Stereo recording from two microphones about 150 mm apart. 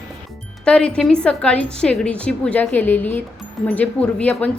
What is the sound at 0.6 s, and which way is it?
A woman's voice, 5° left (ahead or behind).